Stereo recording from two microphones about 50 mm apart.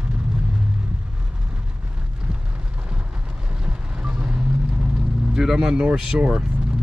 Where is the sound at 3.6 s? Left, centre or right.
Centre.